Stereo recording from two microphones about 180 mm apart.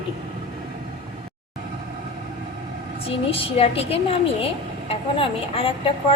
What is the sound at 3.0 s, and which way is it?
A woman's voice, 30° left (ahead or behind).